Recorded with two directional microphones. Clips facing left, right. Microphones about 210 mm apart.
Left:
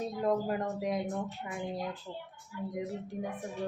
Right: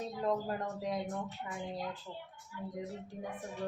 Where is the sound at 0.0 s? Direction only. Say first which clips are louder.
Left 4 dB; 15° left (ahead or behind).